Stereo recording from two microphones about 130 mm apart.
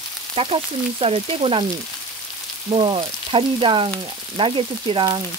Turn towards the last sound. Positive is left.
turn(degrees=-40)  # may be behind; listen again after turning